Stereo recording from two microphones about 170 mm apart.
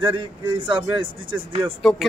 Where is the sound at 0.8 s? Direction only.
30° right (ahead or behind).